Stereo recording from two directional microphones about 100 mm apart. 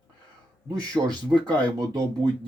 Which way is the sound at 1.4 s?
40° right (ahead or behind).